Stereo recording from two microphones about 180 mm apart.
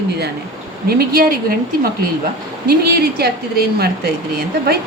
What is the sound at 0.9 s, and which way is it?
A woman's voice, 55° right (ahead or behind).